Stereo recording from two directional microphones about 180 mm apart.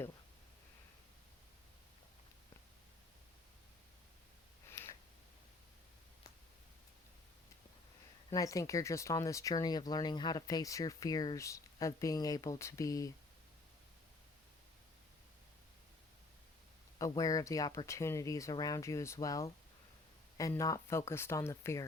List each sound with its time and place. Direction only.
4.7 s a sound: 15° left (ahead or behind)
8.3 s speech: 20° left (ahead or behind)
17.0 s speech: 20° left (ahead or behind)